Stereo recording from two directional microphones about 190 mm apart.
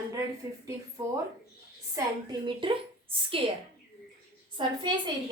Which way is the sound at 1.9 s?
25° right (ahead or behind).